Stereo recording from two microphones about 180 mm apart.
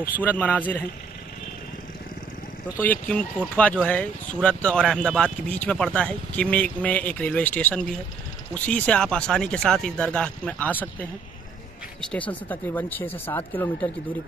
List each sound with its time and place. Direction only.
0.2 s speech: 10° left (ahead or behind)
2.8 s speech: 10° left (ahead or behind)